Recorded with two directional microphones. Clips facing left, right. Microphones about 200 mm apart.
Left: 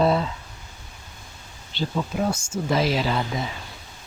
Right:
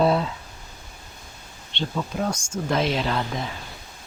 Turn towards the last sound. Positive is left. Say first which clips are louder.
# left 1 dB
turn(degrees=5)  # may be behind; listen again after turning